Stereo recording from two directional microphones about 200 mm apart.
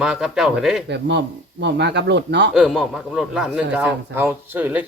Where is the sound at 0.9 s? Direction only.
60° right (ahead or behind).